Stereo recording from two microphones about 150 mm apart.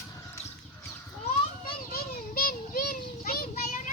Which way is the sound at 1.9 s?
80° left.